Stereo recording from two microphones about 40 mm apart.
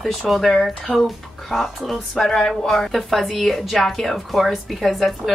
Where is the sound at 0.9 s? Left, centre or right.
Left.